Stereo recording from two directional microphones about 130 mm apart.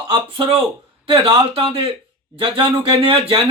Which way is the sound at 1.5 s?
45° right (ahead or behind).